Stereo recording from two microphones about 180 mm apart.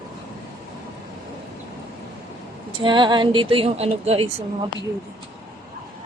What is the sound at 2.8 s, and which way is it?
Speech, 25° right (ahead or behind).